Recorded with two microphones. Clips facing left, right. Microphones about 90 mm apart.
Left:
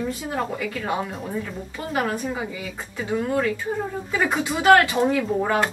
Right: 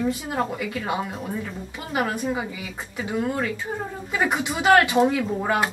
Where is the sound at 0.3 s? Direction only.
10° right (ahead or behind).